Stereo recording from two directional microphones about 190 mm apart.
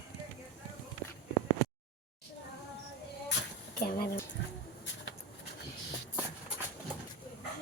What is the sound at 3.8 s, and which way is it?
Speech, 50° left (ahead or behind).